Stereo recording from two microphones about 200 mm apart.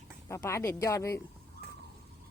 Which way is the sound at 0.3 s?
15° left (ahead or behind).